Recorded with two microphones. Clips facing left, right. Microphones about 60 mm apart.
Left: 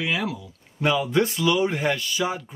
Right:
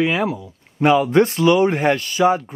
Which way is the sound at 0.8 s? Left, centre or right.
Right.